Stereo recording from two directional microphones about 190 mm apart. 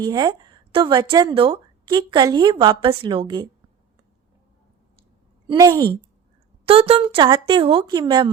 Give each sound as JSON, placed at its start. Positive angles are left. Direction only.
{"t": 0.0, "sound": "speech", "side_deg": -20}
{"t": 5.5, "sound": "a woman's voice", "side_deg": -15}
{"t": 6.7, "sound": "speech", "side_deg": -30}